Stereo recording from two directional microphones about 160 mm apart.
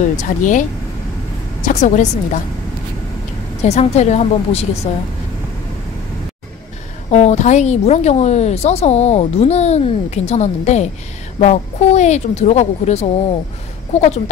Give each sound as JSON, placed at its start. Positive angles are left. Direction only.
{"t": 0.2, "sound": "a woman's voice", "side_deg": 50}
{"t": 1.7, "sound": "a woman's voice", "side_deg": 50}
{"t": 3.6, "sound": "a woman's voice", "side_deg": 45}
{"t": 7.1, "sound": "a woman's voice", "side_deg": 45}